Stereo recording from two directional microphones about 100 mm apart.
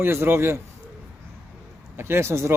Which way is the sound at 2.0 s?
25° right (ahead or behind).